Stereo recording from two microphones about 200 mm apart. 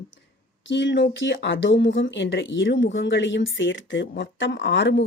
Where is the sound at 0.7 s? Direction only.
65° left (ahead or behind).